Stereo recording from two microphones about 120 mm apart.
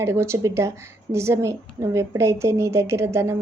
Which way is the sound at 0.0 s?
20° right (ahead or behind).